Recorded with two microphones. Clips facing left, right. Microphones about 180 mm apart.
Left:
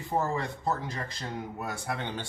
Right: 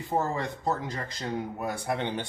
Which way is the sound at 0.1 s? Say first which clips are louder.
Right 1 dB; 20° right (ahead or behind).